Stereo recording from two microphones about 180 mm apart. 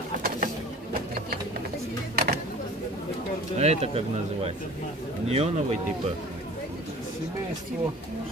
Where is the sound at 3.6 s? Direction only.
35° right (ahead or behind).